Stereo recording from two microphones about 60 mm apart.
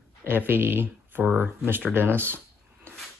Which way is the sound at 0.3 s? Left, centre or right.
Right.